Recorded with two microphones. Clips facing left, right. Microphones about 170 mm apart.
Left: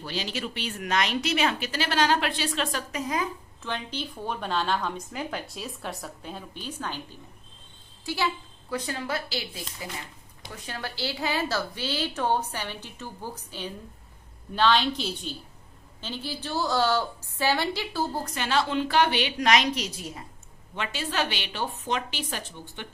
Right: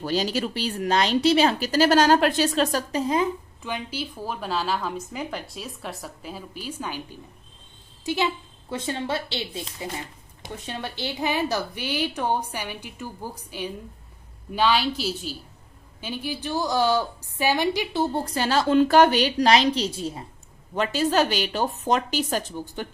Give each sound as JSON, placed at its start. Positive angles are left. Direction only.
{"t": 0.0, "sound": "speech", "side_deg": -40}
{"t": 3.6, "sound": "a woman's voice", "side_deg": -10}
{"t": 18.1, "sound": "speech", "side_deg": -30}
{"t": 20.7, "sound": "speech", "side_deg": -40}